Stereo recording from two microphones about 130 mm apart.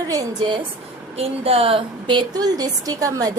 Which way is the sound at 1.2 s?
50° right (ahead or behind).